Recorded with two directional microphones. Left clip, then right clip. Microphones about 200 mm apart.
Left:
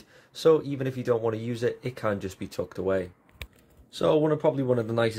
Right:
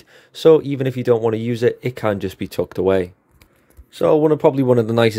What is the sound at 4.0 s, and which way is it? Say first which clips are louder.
Speech: right 9 dB; 30° right (ahead or behind).